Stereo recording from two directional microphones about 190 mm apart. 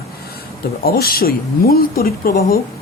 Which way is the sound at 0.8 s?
50° left (ahead or behind).